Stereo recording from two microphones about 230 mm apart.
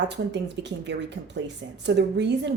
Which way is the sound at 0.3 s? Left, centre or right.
Right.